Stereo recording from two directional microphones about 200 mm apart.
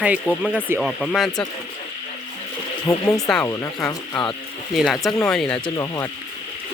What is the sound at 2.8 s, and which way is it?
Speech, 15° left (ahead or behind).